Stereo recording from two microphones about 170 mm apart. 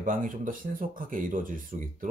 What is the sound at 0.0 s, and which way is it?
Speech, 50° right (ahead or behind).